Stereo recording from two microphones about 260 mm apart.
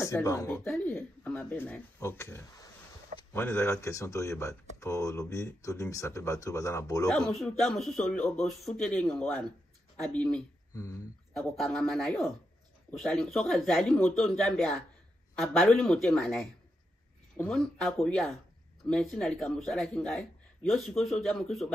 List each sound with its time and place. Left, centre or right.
0.0 s a man's voice: centre
11.3 s a man's voice: centre